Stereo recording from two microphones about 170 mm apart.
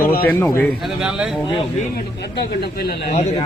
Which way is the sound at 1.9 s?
70° left (ahead or behind).